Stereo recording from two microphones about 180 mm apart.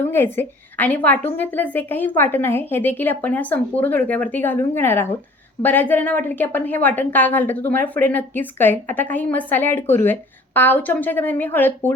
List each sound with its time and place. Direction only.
0.0 s a woman's voice: 10° left (ahead or behind)